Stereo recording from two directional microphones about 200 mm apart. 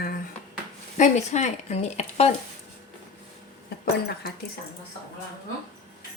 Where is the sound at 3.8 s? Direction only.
50° left (ahead or behind).